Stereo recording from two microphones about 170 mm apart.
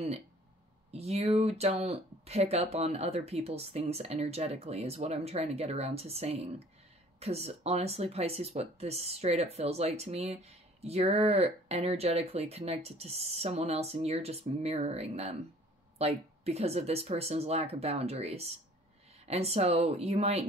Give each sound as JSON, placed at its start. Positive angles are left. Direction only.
{"t": 0.9, "sound": "speech", "side_deg": -35}